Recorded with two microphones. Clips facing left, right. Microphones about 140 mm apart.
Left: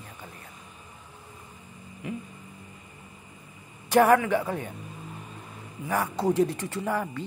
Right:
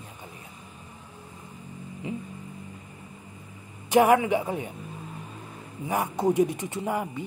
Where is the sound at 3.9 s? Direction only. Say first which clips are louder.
Even; 15° right (ahead or behind).